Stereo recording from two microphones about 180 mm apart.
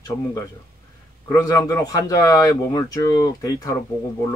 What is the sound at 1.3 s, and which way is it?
A man's voice, 15° left (ahead or behind).